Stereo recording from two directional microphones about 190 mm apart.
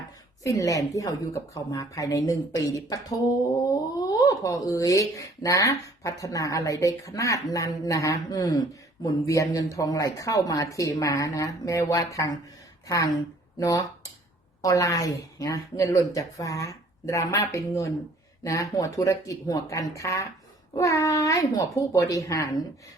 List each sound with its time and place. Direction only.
0.4 s speech: 20° left (ahead or behind)
2.9 s a sound: 20° left (ahead or behind)
3.6 s speech: 20° left (ahead or behind)
13.6 s speech: 20° left (ahead or behind)